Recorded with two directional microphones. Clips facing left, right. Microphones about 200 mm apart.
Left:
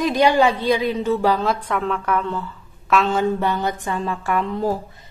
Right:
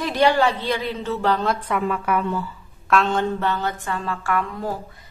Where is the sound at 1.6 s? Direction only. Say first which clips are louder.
Even; 5° right (ahead or behind).